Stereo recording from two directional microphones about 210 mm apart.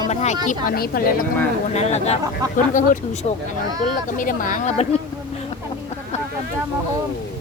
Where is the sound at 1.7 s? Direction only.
30° left (ahead or behind).